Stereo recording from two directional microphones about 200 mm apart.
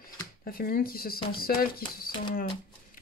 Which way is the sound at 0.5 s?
50° left (ahead or behind).